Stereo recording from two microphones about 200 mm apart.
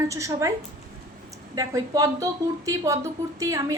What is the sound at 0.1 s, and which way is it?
Speech, 15° right (ahead or behind).